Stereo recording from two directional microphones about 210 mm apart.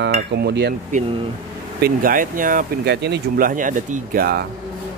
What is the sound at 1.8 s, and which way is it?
Speech, 40° right (ahead or behind).